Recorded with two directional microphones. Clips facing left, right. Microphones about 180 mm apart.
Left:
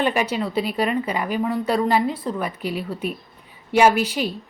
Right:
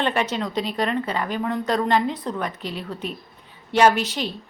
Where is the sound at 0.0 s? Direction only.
10° left (ahead or behind).